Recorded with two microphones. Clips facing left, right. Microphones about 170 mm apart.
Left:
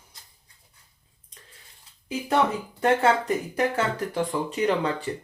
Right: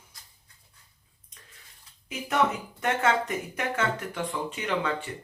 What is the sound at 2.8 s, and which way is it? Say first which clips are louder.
Speech: left 5 dB; 30° left (ahead or behind).